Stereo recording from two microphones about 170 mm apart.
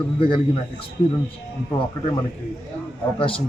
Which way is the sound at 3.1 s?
30° left (ahead or behind).